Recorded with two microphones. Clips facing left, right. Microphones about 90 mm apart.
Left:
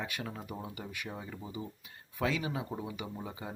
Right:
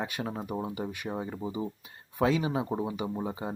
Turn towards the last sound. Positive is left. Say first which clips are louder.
# right 8 dB
turn(degrees=-30)  # may be behind; listen again after turning